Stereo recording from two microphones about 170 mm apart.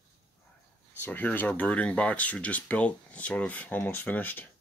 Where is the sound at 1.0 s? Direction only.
10° left (ahead or behind).